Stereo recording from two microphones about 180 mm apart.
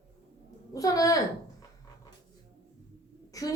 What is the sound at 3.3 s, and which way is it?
Speech, 20° left (ahead or behind).